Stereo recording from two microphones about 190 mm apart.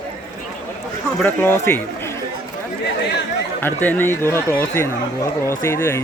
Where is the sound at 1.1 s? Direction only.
10° left (ahead or behind).